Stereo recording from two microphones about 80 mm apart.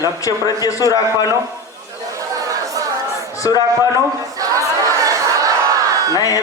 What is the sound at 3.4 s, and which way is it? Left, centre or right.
Speech, left.